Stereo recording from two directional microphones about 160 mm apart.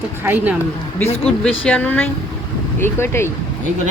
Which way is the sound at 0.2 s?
10° right (ahead or behind).